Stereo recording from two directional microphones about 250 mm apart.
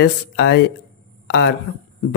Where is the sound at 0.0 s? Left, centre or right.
Left.